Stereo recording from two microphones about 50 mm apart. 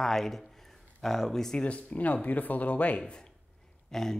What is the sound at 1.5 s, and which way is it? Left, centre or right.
Speech, left.